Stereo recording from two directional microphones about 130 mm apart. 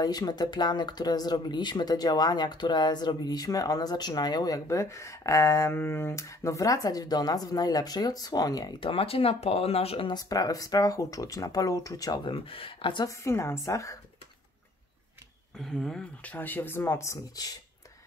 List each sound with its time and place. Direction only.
0.0 s speech: 30° left (ahead or behind)
8.8 s speech: 45° left (ahead or behind); by 12.2 s 25° left (ahead or behind)
12.2 s speech: 45° left (ahead or behind)
13.1 s speech: 20° left (ahead or behind)
15.6 s speech: 5° left (ahead or behind); by 17.6 s 25° left (ahead or behind)